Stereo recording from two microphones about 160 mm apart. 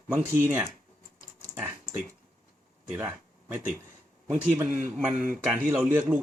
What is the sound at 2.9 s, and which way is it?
Speech, 15° right (ahead or behind).